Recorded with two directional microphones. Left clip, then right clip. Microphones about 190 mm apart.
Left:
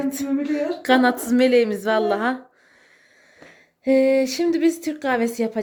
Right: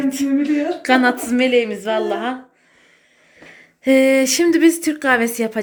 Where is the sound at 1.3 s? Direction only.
25° left (ahead or behind).